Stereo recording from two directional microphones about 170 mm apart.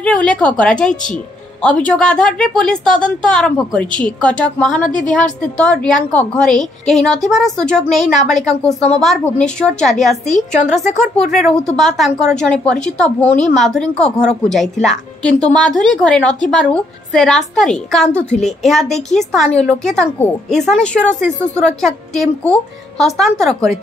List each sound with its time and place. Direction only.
0.0 s a woman's voice: 5° left (ahead or behind)
10.2 s a woman's voice: 45° left (ahead or behind)
11.1 s a woman's voice: centre (ahead or behind)